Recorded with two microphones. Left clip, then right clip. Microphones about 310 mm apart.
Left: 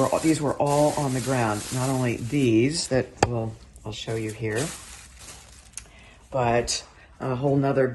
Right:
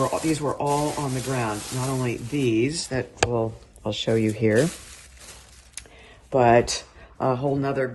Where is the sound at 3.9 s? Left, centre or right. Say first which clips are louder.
Right 8 dB; right.